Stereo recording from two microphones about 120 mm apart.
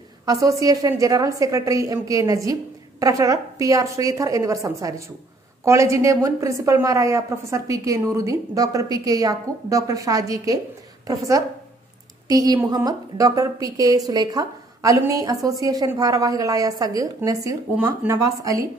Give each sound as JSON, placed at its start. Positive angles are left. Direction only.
{"t": 0.2, "sound": "a woman's voice", "side_deg": -30}